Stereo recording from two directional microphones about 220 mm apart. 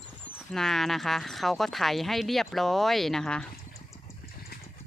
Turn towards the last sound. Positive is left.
turn(degrees=5)  # may be behind; listen again after turning